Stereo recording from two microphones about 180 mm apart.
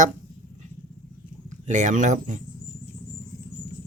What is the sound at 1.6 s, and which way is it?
Speech, 40° right (ahead or behind).